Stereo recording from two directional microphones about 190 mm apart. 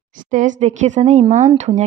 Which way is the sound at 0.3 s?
40° right (ahead or behind).